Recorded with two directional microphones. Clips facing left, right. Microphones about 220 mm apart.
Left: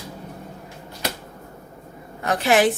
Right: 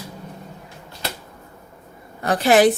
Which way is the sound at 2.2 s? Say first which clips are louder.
Right 3 dB; 35° right (ahead or behind).